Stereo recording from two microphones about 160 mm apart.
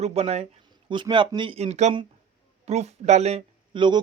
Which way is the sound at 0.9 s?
30° right (ahead or behind).